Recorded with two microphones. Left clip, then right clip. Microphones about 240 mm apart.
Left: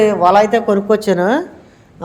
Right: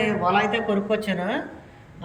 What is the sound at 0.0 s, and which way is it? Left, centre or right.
A woman's voice, centre.